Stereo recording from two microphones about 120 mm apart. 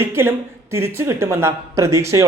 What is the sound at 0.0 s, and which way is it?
A woman's voice, 20° right (ahead or behind).